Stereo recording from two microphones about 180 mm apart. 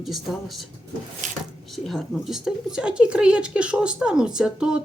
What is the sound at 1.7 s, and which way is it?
Speech, centre (ahead or behind).